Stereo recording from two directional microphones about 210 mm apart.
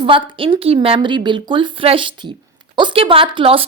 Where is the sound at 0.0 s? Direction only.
25° right (ahead or behind).